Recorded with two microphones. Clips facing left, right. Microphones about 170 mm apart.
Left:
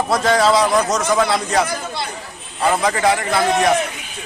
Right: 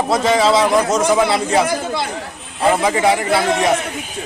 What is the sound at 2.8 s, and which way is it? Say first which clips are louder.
Speech: right 2 dB; 5° right (ahead or behind).